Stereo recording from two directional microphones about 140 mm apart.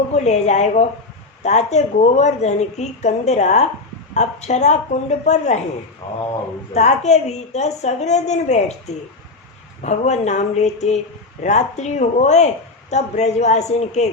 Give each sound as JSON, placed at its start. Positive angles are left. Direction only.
{"t": 0.1, "sound": "speech", "side_deg": 55}
{"t": 6.0, "sound": "speech", "side_deg": 30}
{"t": 6.7, "sound": "a woman's voice", "side_deg": 55}
{"t": 9.8, "sound": "a woman's voice", "side_deg": 55}